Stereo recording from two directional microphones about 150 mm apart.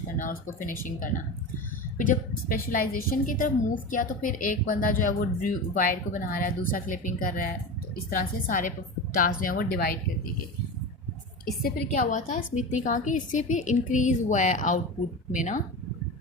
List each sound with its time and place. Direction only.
0.2 s a woman's voice: 65° left (ahead or behind)
11.6 s a woman's voice: 60° left (ahead or behind)